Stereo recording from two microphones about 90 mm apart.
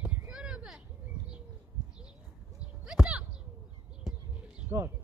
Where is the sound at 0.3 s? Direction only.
10° right (ahead or behind).